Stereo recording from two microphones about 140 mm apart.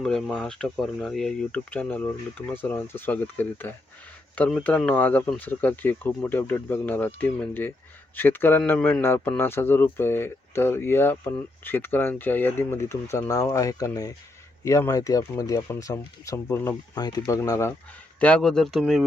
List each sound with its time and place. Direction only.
0.0 s speech: 5° left (ahead or behind); by 17.7 s 20° left (ahead or behind)
18.2 s speech: 5° left (ahead or behind)